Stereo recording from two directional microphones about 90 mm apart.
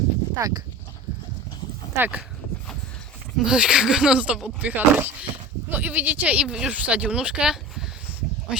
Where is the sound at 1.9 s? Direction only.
20° right (ahead or behind).